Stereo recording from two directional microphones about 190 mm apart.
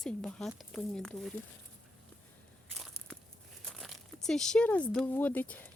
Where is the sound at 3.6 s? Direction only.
Centre (ahead or behind).